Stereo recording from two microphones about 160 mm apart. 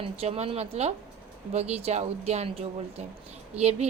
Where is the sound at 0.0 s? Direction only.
40° right (ahead or behind).